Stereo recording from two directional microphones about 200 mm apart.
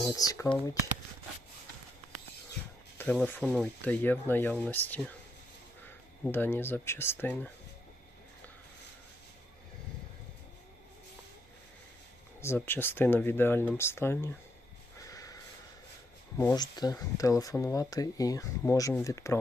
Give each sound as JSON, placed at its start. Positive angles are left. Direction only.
{"t": 0.2, "sound": "speech", "side_deg": 15}
{"t": 3.0, "sound": "speech", "side_deg": 10}
{"t": 6.2, "sound": "speech", "side_deg": 10}
{"t": 12.4, "sound": "speech", "side_deg": 10}
{"t": 15.0, "sound": "sniff", "side_deg": 15}
{"t": 16.6, "sound": "speech", "side_deg": 20}